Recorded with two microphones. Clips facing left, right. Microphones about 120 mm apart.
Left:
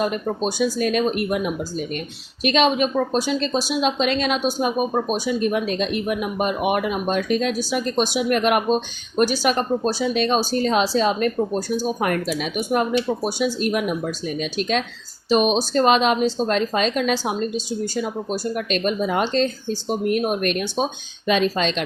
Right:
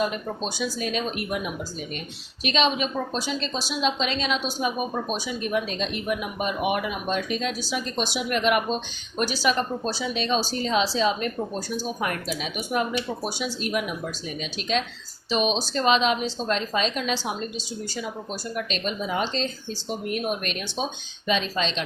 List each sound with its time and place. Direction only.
0.0 s speech: 50° left (ahead or behind)